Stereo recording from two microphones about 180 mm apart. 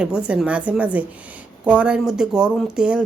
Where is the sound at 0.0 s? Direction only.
5° right (ahead or behind).